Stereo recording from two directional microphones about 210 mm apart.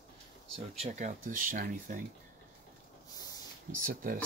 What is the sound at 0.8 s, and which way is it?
Speech, 35° right (ahead or behind).